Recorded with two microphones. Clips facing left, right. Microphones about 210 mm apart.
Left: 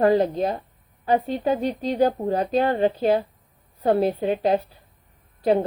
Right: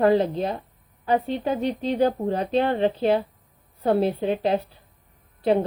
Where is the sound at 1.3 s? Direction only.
40° left (ahead or behind).